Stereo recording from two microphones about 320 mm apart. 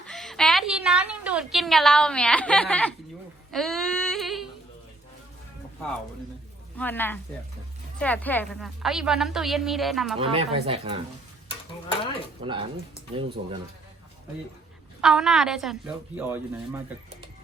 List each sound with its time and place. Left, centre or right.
0.0 s a sound: centre
3.5 s yodeling: centre
6.7 s a woman's voice: centre
10.2 s speech: centre
12.4 s speech: centre
13.4 s speech: right
15.0 s a woman's voice: centre